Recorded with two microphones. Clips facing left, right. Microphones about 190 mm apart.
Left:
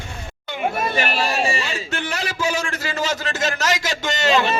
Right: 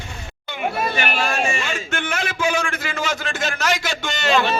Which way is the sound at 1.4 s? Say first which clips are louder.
Even; 35° left (ahead or behind).